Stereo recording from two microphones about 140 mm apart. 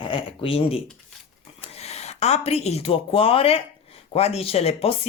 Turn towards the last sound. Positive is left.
turn(degrees=45)  # may be behind; listen again after turning